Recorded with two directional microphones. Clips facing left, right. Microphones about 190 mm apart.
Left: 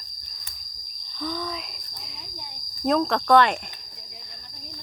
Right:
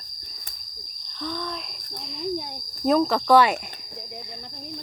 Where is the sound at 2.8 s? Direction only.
Centre (ahead or behind).